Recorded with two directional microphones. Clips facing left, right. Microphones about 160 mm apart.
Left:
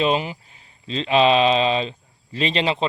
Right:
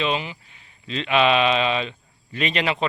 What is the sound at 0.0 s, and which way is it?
Speech, 40° left (ahead or behind).